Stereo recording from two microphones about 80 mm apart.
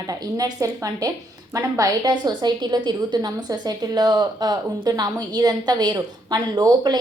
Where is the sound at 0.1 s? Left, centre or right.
Right.